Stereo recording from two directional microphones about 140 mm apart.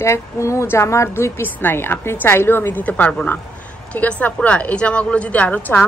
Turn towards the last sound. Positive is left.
turn(degrees=15)  # may be behind; listen again after turning